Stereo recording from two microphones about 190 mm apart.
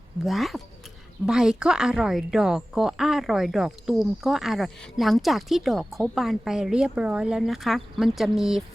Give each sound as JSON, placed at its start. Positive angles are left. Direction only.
{"t": 0.3, "sound": "a woman's voice", "side_deg": 0}